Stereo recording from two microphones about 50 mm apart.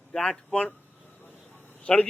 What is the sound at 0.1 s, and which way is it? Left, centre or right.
Speech, centre.